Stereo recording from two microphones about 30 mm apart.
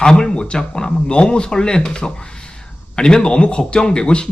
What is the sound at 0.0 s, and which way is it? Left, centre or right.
Speech, left.